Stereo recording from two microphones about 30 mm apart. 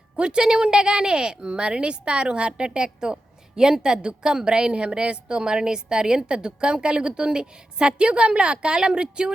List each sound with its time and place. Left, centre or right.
0.2 s a woman's voice: right
5.4 s a woman's voice: right